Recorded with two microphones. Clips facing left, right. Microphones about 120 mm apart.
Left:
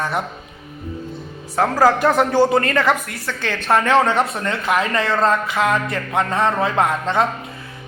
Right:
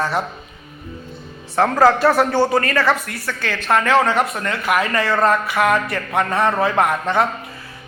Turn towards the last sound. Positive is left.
turn(degrees=20)  # may be behind; listen again after turning